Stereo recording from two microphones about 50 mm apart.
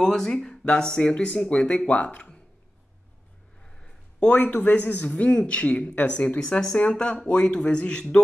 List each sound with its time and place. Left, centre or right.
0.0 s a man's voice: centre
3.6 s a sound: centre
4.4 s a man's voice: left; by 8.2 s centre